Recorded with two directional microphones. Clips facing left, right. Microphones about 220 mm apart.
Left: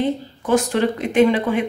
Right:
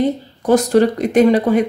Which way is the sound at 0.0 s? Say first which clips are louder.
Right 4 dB; 40° right (ahead or behind).